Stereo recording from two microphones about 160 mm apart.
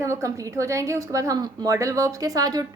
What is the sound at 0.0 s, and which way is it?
A woman's voice, 20° right (ahead or behind).